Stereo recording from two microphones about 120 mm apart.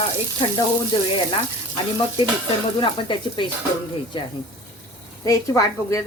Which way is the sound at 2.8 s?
45° left (ahead or behind).